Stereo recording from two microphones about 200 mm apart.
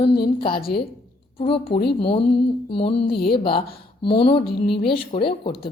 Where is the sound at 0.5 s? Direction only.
50° left (ahead or behind).